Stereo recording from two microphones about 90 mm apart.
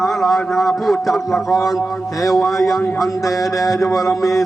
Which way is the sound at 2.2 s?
Centre (ahead or behind).